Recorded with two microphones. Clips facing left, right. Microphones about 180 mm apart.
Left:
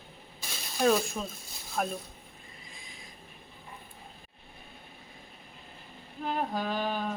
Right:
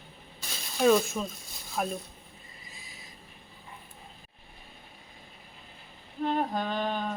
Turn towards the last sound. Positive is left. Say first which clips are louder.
# right 1 dB
turn(degrees=5)  # may be behind; listen again after turning